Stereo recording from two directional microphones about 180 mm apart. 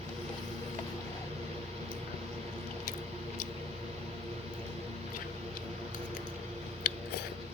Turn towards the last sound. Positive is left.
turn(degrees=60)  # may be behind; listen again after turning